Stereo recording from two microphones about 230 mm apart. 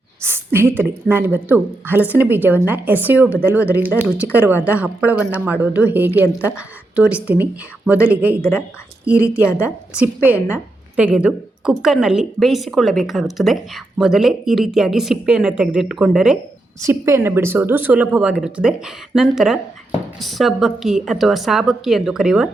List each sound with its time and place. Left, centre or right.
0.2 s a woman's voice: centre
8.4 s a woman's voice: centre
9.1 s a woman's voice: centre
10.3 s a woman's voice: centre
10.9 s a woman's voice: centre